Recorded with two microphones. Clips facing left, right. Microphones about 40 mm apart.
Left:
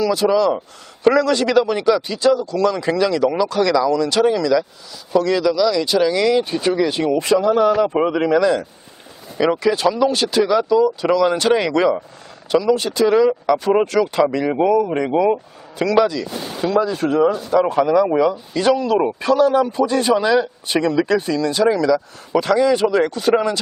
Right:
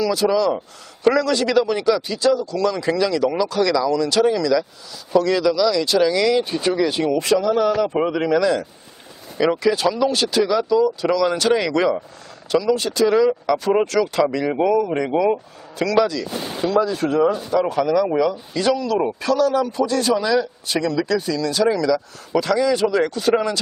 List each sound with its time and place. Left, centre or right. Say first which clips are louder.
0.0 s speech: left 2 dB; centre
7.2 s speech: left 3 dB; left
7.5 s speech: left 3 dB; centre
17.6 s speech: left 4 dB; left